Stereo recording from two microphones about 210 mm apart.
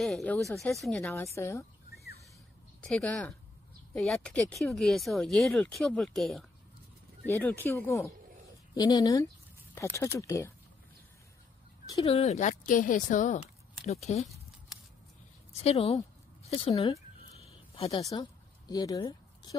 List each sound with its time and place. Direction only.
0.0 s speech: 5° left (ahead or behind)
2.8 s speech: 5° left (ahead or behind)
11.9 s speech: 25° left (ahead or behind)
15.5 s speech: 30° left (ahead or behind)
16.4 s a sound: 25° left (ahead or behind)
17.9 s speech: 20° left (ahead or behind)